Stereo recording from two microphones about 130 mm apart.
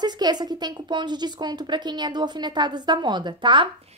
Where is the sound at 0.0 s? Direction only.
35° right (ahead or behind).